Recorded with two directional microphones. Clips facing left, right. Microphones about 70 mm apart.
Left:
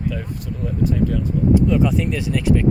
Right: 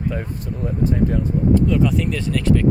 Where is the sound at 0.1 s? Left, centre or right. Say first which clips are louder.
Right 1 dB; right.